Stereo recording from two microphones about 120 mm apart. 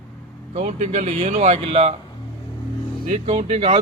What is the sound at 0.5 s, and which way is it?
Speech, 75° right (ahead or behind).